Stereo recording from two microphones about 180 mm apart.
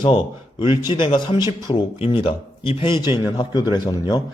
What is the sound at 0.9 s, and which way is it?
Speech, 25° left (ahead or behind).